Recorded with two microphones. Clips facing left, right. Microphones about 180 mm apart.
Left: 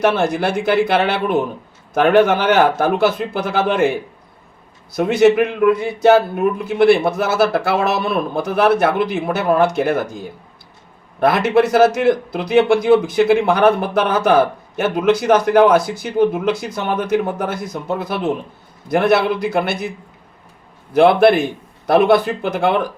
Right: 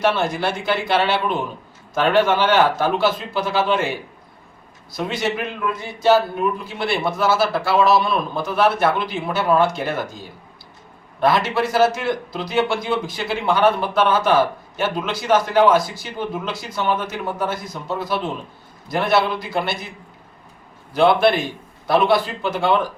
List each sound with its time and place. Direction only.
0.2 s speech: 55° left (ahead or behind)
4.9 s speech: 60° left (ahead or behind)
11.2 s speech: 60° left (ahead or behind)
20.9 s speech: 55° left (ahead or behind)